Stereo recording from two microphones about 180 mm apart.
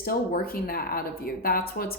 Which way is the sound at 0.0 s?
55° left (ahead or behind).